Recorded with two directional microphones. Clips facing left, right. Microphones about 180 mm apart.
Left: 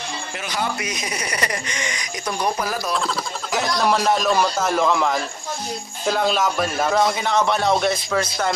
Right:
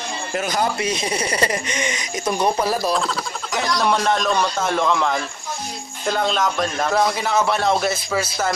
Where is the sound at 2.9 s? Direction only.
Centre (ahead or behind).